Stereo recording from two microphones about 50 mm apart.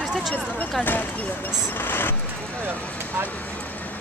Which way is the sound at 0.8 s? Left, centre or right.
Left.